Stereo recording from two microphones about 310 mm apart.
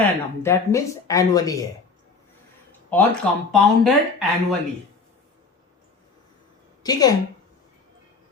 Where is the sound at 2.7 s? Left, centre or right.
Centre.